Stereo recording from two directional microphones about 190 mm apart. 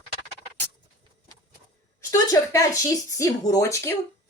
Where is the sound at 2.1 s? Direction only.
15° left (ahead or behind).